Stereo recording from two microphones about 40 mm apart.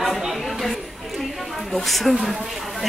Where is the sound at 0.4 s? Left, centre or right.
Centre.